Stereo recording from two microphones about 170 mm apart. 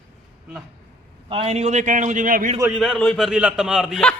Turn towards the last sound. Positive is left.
turn(degrees=0)  # may be behind; listen again after turning